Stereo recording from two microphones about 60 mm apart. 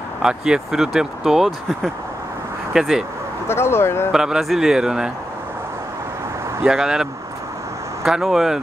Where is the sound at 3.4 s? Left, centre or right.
Left.